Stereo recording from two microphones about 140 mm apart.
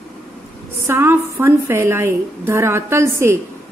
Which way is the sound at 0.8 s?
20° right (ahead or behind).